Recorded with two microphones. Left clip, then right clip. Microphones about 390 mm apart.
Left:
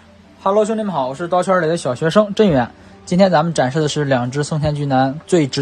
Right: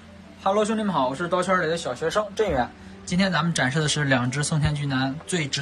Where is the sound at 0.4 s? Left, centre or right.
Centre.